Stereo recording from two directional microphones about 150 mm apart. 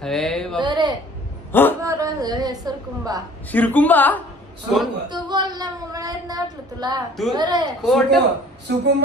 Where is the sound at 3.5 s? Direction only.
10° left (ahead or behind).